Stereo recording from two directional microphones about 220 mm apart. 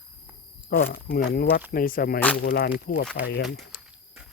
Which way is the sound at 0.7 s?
45° left (ahead or behind).